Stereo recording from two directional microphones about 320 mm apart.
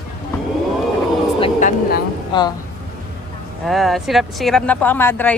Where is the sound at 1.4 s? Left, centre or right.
Left.